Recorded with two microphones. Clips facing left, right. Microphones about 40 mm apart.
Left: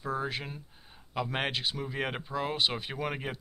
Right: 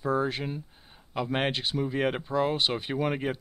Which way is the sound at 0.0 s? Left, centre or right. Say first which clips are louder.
Right 6 dB; centre.